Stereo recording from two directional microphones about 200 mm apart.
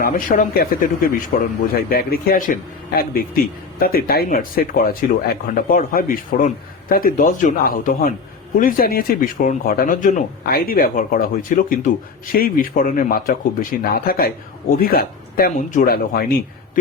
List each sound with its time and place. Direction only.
0.0 s speech: 45° left (ahead or behind)